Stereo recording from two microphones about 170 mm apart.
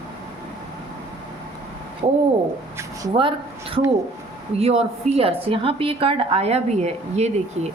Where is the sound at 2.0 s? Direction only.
35° right (ahead or behind).